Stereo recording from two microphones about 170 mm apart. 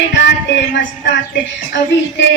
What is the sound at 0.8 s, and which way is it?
Speech, 90° left.